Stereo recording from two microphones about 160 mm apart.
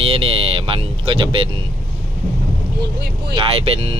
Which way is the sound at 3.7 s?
40° right (ahead or behind).